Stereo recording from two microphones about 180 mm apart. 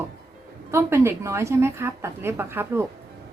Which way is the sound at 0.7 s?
15° right (ahead or behind).